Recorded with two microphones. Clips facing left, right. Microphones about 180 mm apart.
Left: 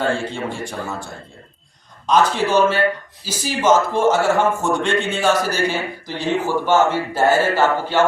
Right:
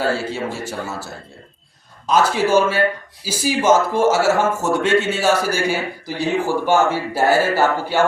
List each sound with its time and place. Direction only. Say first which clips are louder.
0.0 s a man's voice: even; 5° right (ahead or behind)